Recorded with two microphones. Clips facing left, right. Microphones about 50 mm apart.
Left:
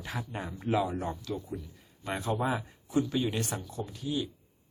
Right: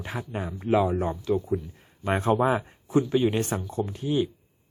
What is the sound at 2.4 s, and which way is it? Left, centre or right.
Speech, right.